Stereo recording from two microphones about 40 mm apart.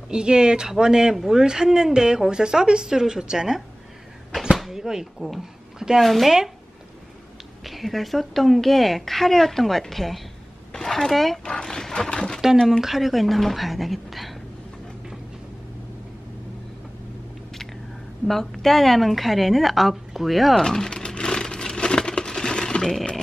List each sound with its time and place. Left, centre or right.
0.1 s speech: right
1.1 s a woman's voice: centre
1.4 s a woman's voice: centre
5.9 s a woman's voice: centre
7.6 s a woman's voice: centre
11.4 s wild animals: left
12.8 s a woman's voice: centre
18.2 s a woman's voice: centre
20.6 s a sound: centre